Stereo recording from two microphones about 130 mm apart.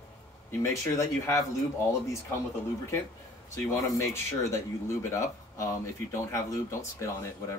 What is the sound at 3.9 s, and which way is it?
Speech, 20° left (ahead or behind).